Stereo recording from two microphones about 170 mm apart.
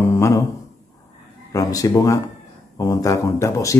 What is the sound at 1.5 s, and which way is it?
Speech, 20° left (ahead or behind).